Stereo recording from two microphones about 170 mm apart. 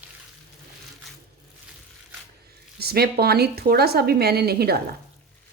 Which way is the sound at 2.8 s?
65° right (ahead or behind).